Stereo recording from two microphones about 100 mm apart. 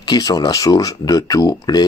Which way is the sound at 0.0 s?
45° left (ahead or behind).